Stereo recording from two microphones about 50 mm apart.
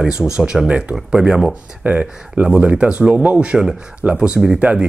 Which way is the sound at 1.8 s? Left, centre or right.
Right.